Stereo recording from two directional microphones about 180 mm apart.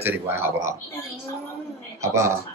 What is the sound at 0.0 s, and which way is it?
Speech, 15° right (ahead or behind).